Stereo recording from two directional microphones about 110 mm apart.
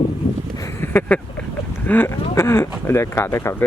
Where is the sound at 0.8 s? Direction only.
15° left (ahead or behind).